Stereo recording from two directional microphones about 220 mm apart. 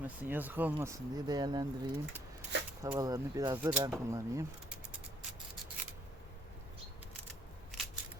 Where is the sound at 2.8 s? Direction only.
15° right (ahead or behind).